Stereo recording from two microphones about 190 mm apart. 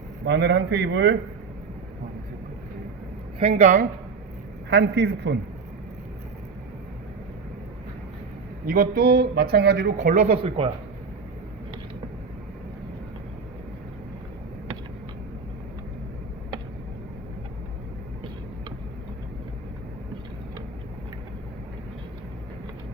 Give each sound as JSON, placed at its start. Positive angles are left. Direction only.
{"t": 0.3, "sound": "a man's voice", "side_deg": -70}
{"t": 3.6, "sound": "speech", "side_deg": -40}
{"t": 4.7, "sound": "speech", "side_deg": -60}
{"t": 8.6, "sound": "speech", "side_deg": -50}
{"t": 10.1, "sound": "speech", "side_deg": -30}